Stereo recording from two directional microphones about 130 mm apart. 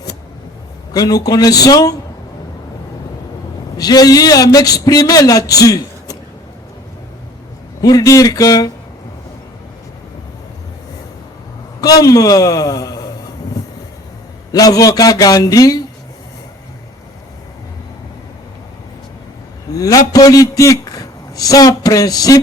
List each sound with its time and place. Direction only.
0.9 s a man's voice: 30° left (ahead or behind)
3.8 s a man's voice: 30° left (ahead or behind)
7.8 s a man's voice: 30° left (ahead or behind)
11.8 s a man's voice: 30° left (ahead or behind)
14.5 s a man's voice: 30° left (ahead or behind)
19.7 s a man's voice: 25° left (ahead or behind)